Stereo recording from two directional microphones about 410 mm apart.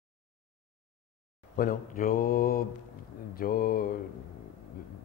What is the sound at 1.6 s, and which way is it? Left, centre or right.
Speech, left.